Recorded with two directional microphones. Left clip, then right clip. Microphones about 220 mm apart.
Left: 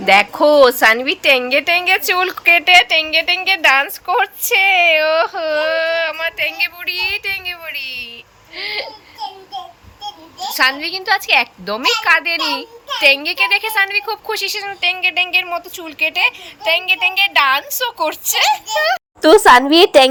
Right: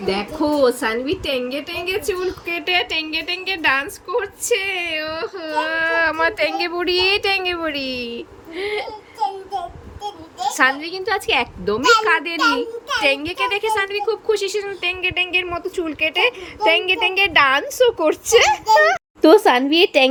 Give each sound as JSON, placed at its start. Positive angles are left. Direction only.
{"t": 0.0, "sound": "a woman's voice", "side_deg": 5}
{"t": 8.5, "sound": "a woman's voice", "side_deg": -15}
{"t": 10.5, "sound": "a woman's voice", "side_deg": -15}
{"t": 19.2, "sound": "speech", "side_deg": 20}